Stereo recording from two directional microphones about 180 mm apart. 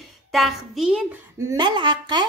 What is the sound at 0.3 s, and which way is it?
Speech, centre (ahead or behind).